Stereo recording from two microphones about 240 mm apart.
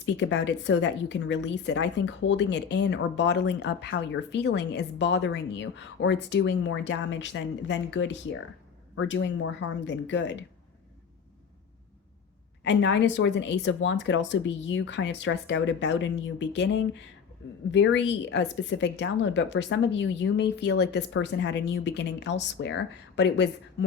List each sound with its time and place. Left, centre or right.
0.0 s a woman's voice: left
12.6 s a woman's voice: left